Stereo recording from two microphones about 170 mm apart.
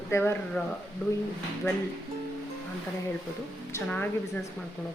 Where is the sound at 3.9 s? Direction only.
10° left (ahead or behind).